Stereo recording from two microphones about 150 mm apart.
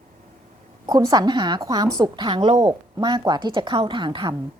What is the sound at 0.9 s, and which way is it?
A woman's voice, 25° right (ahead or behind).